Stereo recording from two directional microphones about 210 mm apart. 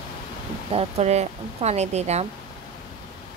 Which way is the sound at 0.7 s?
30° right (ahead or behind).